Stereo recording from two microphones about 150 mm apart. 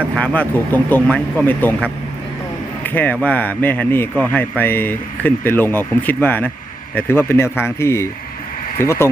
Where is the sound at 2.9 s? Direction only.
10° left (ahead or behind).